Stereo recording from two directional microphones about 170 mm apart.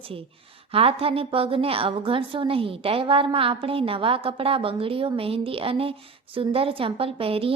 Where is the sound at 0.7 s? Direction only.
35° right (ahead or behind).